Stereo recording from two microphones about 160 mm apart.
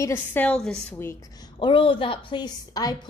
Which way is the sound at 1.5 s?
30° left (ahead or behind).